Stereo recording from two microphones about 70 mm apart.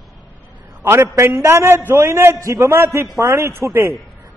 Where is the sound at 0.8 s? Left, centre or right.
Right.